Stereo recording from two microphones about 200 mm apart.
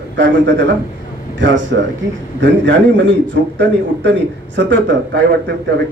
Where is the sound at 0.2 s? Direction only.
65° right (ahead or behind).